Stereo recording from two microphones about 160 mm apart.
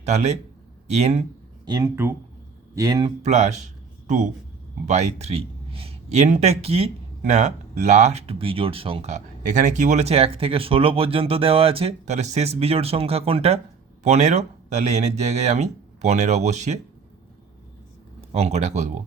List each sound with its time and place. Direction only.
0.0 s speech: 45° right (ahead or behind)
1.6 s speech: 20° right (ahead or behind)
3.2 s a man's voice: 45° right (ahead or behind)
18.2 s speech: 40° right (ahead or behind)